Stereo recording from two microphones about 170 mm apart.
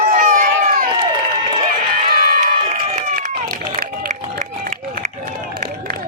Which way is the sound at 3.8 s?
50° right (ahead or behind).